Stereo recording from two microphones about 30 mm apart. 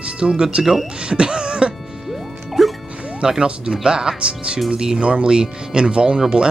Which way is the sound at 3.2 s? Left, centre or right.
Right.